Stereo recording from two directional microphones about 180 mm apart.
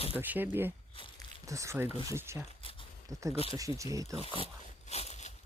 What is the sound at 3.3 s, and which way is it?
Speech, 30° left (ahead or behind).